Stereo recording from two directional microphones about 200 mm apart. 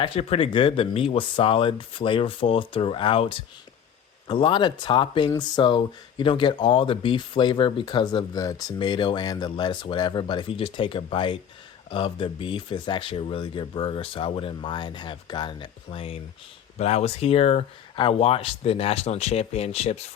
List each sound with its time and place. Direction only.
0.0 s speech: 30° left (ahead or behind)